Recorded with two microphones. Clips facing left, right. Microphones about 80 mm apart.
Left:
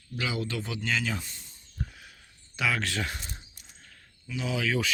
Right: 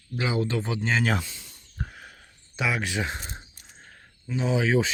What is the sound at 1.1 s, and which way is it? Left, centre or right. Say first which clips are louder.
Speech: right 7 dB; right.